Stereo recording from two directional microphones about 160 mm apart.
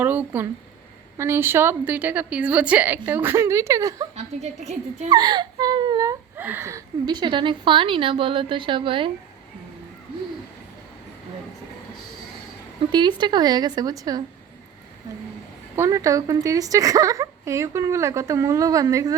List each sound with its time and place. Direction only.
0.0 s a woman's voice: 10° right (ahead or behind)
4.1 s a woman's voice: 45° right (ahead or behind)
5.0 s speech: 25° right (ahead or behind)
12.9 s speech: 25° right (ahead or behind)
15.7 s speech: 20° right (ahead or behind)